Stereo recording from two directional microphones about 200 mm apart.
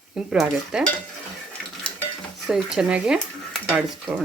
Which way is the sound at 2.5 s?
5° right (ahead or behind).